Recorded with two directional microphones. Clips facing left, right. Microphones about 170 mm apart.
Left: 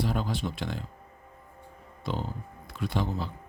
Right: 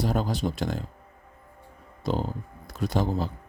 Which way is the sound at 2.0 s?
40° right (ahead or behind).